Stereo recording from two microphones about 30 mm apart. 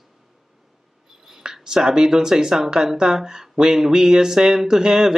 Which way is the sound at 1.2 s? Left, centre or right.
Centre.